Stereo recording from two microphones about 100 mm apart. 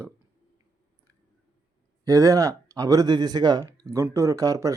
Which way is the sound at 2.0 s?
35° right (ahead or behind).